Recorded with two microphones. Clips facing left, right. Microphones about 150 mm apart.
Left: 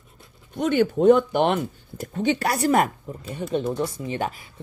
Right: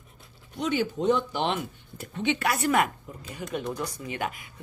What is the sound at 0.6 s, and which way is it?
Speech, 55° left (ahead or behind).